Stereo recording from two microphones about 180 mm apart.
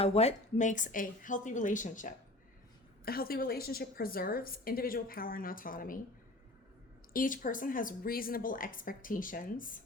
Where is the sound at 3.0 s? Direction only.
55° left (ahead or behind).